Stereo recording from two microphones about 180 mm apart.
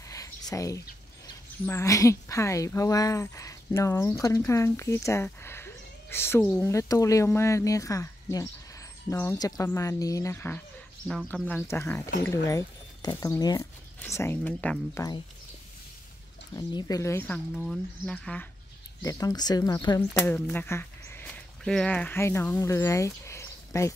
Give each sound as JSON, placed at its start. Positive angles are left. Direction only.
{"t": 0.1, "sound": "whispering", "side_deg": 20}
{"t": 1.2, "sound": "speech", "side_deg": 15}
{"t": 11.1, "sound": "speech", "side_deg": 0}
{"t": 16.5, "sound": "speech", "side_deg": 20}
{"t": 19.0, "sound": "speech", "side_deg": 20}
{"t": 20.0, "sound": "speech", "side_deg": 10}